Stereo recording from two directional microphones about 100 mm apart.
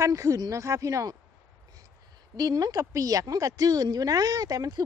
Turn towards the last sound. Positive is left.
turn(degrees=-40)  # may be behind; listen again after turning